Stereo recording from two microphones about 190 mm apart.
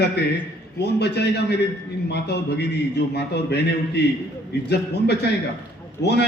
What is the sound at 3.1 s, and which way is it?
A man's voice, 60° left (ahead or behind).